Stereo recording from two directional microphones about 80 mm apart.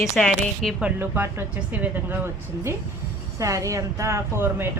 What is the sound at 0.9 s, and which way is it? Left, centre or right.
Speech, right.